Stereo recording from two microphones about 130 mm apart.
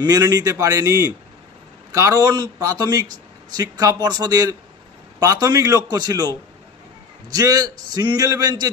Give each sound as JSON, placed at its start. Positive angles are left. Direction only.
{"t": 0.0, "sound": "a man's voice", "side_deg": -25}
{"t": 7.3, "sound": "a man's voice", "side_deg": -30}